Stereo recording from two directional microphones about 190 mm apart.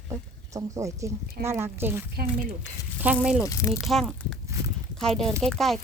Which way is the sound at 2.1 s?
55° right (ahead or behind).